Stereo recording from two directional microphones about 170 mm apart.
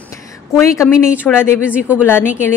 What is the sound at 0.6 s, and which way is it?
Speech, 15° left (ahead or behind).